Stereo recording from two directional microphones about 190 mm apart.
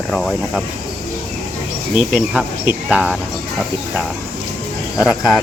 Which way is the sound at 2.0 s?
5° right (ahead or behind).